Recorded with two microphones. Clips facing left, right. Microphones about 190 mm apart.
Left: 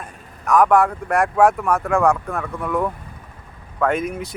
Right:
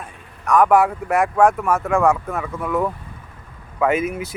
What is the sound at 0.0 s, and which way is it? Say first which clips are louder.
Speech: even; centre (ahead or behind).